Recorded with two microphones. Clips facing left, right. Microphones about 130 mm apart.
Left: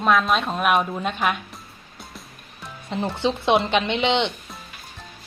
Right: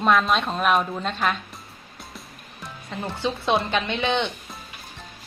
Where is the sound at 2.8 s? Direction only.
20° left (ahead or behind).